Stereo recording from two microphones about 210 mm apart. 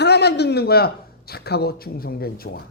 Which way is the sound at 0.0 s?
50° left (ahead or behind).